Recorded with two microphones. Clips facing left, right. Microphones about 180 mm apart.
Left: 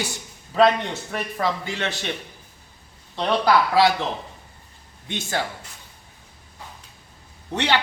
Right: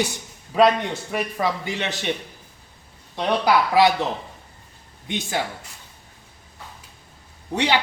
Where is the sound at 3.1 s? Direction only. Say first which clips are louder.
Even; 10° right (ahead or behind).